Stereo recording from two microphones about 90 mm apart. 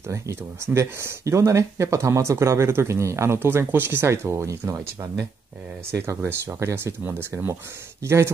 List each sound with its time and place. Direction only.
0.1 s speech: 35° right (ahead or behind)